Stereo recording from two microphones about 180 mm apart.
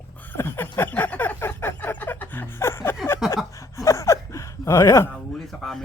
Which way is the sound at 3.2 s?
Centre (ahead or behind).